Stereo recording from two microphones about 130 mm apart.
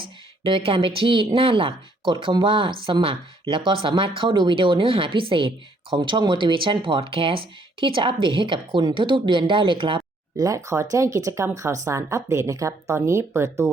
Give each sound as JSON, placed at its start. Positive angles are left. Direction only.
{"t": 0.0, "sound": "speech", "side_deg": -40}
{"t": 10.3, "sound": "speech", "side_deg": -25}